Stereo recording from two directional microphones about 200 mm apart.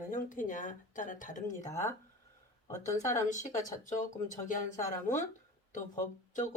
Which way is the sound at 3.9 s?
40° left (ahead or behind).